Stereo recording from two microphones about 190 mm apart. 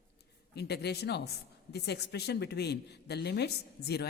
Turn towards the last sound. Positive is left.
turn(degrees=60)  # may be behind; listen again after turning